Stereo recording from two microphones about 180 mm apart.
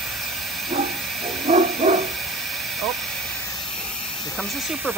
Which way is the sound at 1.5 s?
35° right (ahead or behind).